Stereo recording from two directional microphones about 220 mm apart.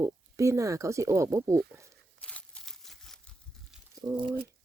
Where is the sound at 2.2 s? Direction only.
5° left (ahead or behind).